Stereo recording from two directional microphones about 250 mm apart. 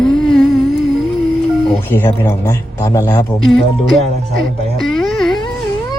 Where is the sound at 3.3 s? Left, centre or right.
Centre.